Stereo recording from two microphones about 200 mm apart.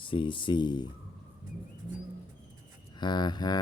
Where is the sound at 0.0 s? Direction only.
25° left (ahead or behind).